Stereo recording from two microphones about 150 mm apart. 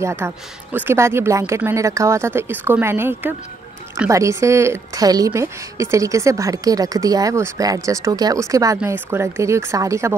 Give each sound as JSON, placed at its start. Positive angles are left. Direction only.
{"t": 0.2, "sound": "a woman's voice", "side_deg": -15}